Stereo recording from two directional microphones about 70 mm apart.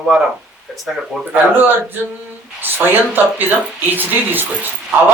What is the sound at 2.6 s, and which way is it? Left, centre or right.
Speech, right.